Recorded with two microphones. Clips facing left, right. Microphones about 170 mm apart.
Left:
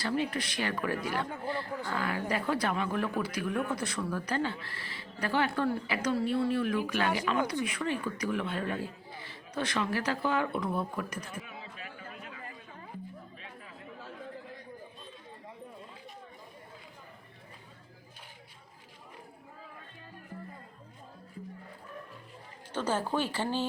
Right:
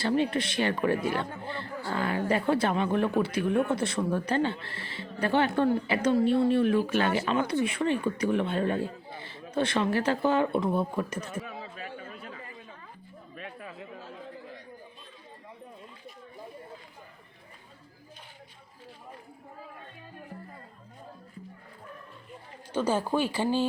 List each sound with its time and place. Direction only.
0.0 s speech: 25° right (ahead or behind)
11.3 s chatter: 40° right (ahead or behind)
13.3 s a sound: 65° right (ahead or behind)
22.7 s speech: 10° right (ahead or behind)